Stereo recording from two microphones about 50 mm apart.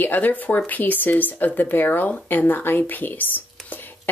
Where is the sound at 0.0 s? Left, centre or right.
Left.